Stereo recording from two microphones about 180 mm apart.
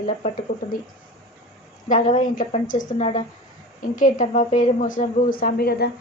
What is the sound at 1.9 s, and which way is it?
A woman's voice, 40° left (ahead or behind).